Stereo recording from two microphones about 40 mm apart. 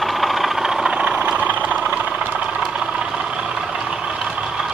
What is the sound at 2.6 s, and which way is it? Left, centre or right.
Vehicle, right.